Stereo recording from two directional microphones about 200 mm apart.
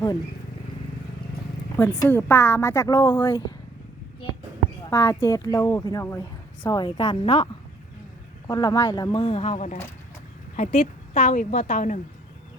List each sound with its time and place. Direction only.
1.8 s a woman's voice: 10° left (ahead or behind)
4.9 s a woman's voice: 15° left (ahead or behind)
8.4 s a woman's voice: 20° left (ahead or behind); by 11.9 s 40° left (ahead or behind)